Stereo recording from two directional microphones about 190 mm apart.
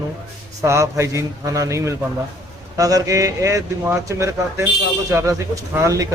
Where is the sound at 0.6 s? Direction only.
15° right (ahead or behind).